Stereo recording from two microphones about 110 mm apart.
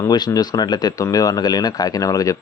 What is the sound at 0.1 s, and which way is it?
A man's voice, 40° left (ahead or behind).